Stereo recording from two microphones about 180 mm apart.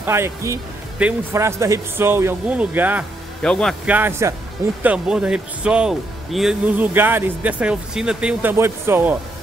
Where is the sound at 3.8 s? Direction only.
10° right (ahead or behind).